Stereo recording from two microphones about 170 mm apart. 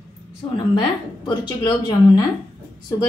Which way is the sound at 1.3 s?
25° left (ahead or behind).